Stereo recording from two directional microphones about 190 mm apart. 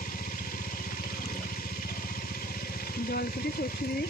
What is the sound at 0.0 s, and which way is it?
Vehicle, 50° left (ahead or behind).